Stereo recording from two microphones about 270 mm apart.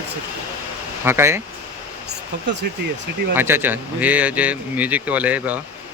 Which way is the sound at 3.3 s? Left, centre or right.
Centre.